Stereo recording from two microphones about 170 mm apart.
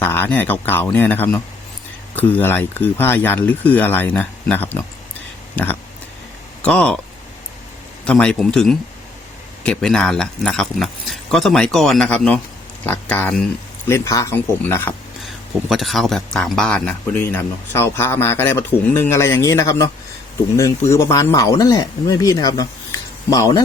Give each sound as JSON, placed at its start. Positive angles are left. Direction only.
{"t": 0.0, "sound": "speech", "side_deg": 15}
{"t": 6.6, "sound": "speech", "side_deg": 5}
{"t": 8.0, "sound": "speech", "side_deg": 5}
{"t": 15.7, "sound": "speech", "side_deg": 0}
{"t": 20.9, "sound": "speech", "side_deg": 20}